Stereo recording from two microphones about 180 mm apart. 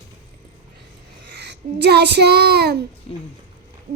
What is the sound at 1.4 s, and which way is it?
Child singing, 70° right (ahead or behind).